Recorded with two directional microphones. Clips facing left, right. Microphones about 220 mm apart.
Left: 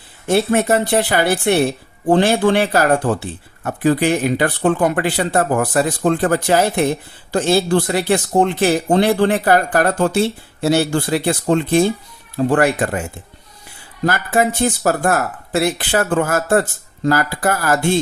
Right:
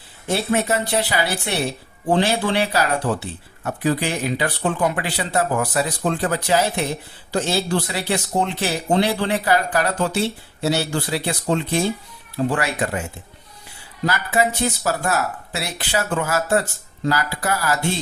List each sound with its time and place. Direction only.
0.3 s speech: 50° left (ahead or behind)
14.0 s speech: 50° left (ahead or behind)